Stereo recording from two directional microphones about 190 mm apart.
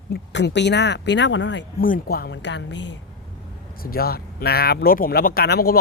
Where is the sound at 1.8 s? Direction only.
50° left (ahead or behind); by 3.0 s 70° left (ahead or behind).